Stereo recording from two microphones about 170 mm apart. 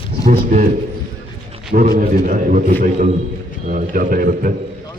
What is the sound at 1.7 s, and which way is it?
A man's voice, 55° right (ahead or behind).